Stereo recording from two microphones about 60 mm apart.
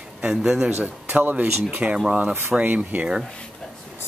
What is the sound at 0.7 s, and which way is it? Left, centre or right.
Speech, right.